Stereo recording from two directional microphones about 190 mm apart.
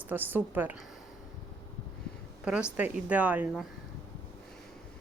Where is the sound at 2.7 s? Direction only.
10° right (ahead or behind).